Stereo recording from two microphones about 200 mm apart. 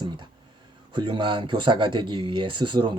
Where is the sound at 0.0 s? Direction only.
20° right (ahead or behind).